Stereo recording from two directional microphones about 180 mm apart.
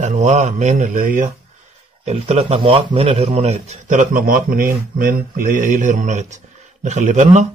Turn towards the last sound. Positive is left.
turn(degrees=-45)  # may be behind; listen again after turning